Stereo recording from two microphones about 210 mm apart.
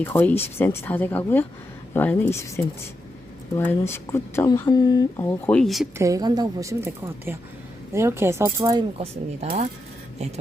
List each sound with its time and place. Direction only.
0.0 s a woman's voice: 10° left (ahead or behind)
6.0 s a woman's voice: 15° right (ahead or behind)
9.0 s speech: 30° right (ahead or behind)